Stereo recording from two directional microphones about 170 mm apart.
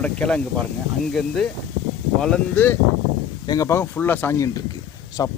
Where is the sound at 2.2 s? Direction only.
10° left (ahead or behind).